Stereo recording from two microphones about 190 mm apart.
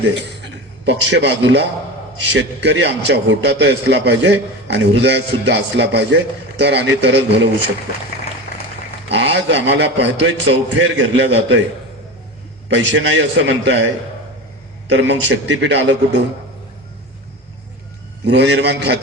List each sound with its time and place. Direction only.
0.0 s a man's voice: 65° right (ahead or behind)
9.0 s a man's voice: 65° right (ahead or behind)
12.6 s a man's voice: 75° right (ahead or behind)
18.3 s a man's voice: 65° right (ahead or behind)